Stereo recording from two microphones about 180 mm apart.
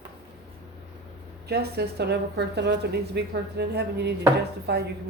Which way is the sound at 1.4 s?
60° right (ahead or behind).